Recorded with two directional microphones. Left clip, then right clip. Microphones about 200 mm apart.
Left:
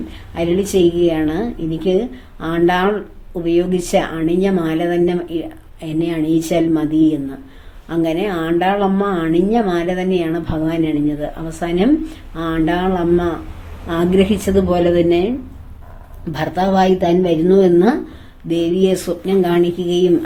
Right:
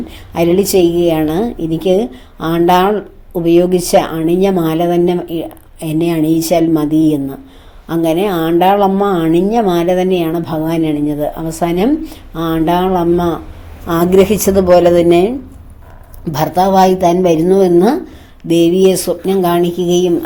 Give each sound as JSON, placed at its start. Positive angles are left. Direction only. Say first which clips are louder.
{"t": 0.1, "sound": "a woman's voice", "louder": "right 6 dB", "side_deg": -30}
{"t": 16.3, "sound": "a woman's voice", "louder": "right 6 dB", "side_deg": -25}